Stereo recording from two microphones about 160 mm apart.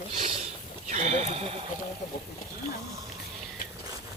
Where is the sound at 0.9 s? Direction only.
45° right (ahead or behind).